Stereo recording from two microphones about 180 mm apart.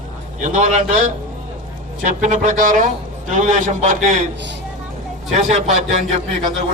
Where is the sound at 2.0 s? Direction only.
45° right (ahead or behind).